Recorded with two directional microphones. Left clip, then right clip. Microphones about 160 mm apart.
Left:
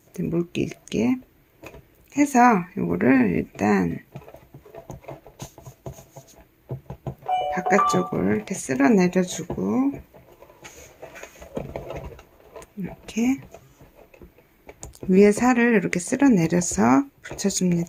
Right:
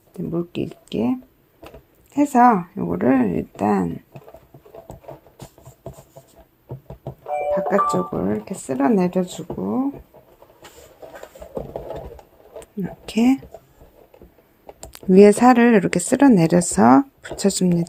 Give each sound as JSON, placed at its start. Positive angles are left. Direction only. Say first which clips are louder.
{"t": 0.1, "sound": "speech", "louder": "even", "side_deg": 0}
{"t": 4.9, "sound": "a sound", "louder": "right 1 dB", "side_deg": 5}
{"t": 7.5, "sound": "speech", "louder": "right 2 dB", "side_deg": -5}
{"t": 12.5, "sound": "speech", "louder": "right 5 dB", "side_deg": -30}
{"t": 14.8, "sound": "speech", "louder": "right 6 dB", "side_deg": -30}